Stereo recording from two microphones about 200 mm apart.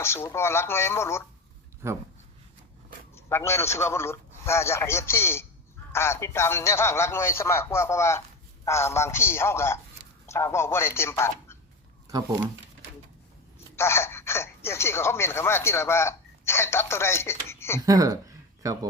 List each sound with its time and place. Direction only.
0.0 s speech: 10° left (ahead or behind)
1.8 s speech: 10° right (ahead or behind)
3.2 s speech: 10° left (ahead or behind)
12.0 s speech: 20° right (ahead or behind)
13.7 s speech: 15° left (ahead or behind)
17.7 s speech: 20° right (ahead or behind)